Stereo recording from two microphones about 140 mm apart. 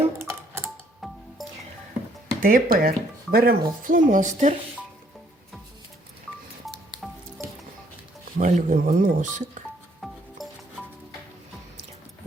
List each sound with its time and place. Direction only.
0.0 s typing: 15° right (ahead or behind)
1.0 s music: centre (ahead or behind)
2.4 s speech: 85° right; by 4.5 s 60° right (ahead or behind)
7.4 s music: centre (ahead or behind)
8.4 s speech: 60° right (ahead or behind)
10.0 s music: centre (ahead or behind)